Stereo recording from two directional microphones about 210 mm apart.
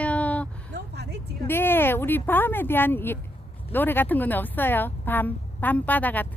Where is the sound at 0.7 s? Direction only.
50° right (ahead or behind).